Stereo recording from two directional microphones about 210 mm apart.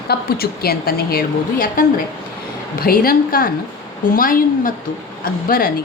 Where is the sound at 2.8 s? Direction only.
45° left (ahead or behind).